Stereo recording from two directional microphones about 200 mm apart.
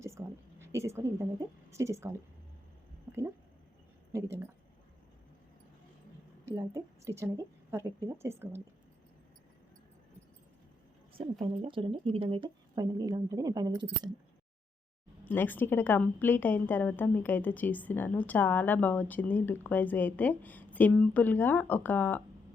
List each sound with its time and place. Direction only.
0.0 s a sound: 15° right (ahead or behind)
1.7 s a woman's voice: 15° right (ahead or behind)
6.4 s a woman's voice: 15° right (ahead or behind)
11.1 s speech: 25° right (ahead or behind)
15.2 s a woman's voice: 10° left (ahead or behind)